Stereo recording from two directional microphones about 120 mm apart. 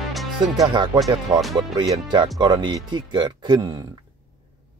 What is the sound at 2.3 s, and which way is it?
Speech, 40° right (ahead or behind).